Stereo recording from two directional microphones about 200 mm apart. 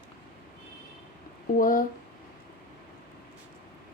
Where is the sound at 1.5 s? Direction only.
45° left (ahead or behind).